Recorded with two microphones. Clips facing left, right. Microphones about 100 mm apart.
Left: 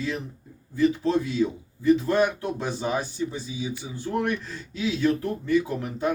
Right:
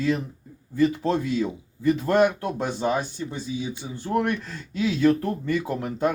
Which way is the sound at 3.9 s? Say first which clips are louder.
Right 3 dB; 50° right (ahead or behind).